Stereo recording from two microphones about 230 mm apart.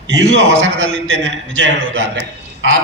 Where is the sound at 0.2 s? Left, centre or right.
Right.